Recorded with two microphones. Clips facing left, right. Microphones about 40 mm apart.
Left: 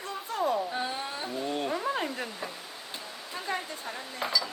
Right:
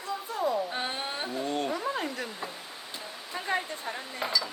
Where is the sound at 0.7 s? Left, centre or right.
Right.